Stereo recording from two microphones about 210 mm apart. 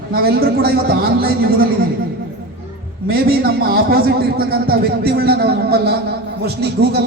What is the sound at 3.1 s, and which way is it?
A man's voice, 45° right (ahead or behind).